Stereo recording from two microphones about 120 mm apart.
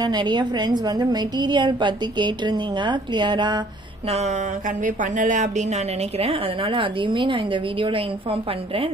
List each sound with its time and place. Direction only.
0.0 s a woman's voice: 40° right (ahead or behind)
4.1 s speech: 75° right (ahead or behind); by 8.9 s 50° right (ahead or behind)